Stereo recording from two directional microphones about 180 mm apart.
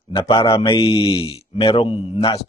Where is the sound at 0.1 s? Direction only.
30° left (ahead or behind).